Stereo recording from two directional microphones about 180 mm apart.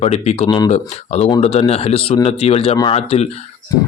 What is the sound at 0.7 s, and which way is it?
Speech, 35° left (ahead or behind).